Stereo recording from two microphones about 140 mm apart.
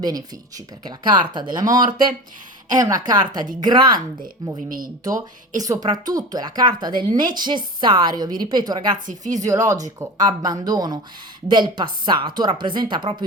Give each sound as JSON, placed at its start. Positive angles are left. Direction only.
{"t": 0.0, "sound": "speech", "side_deg": -30}
{"t": 5.5, "sound": "speech", "side_deg": -25}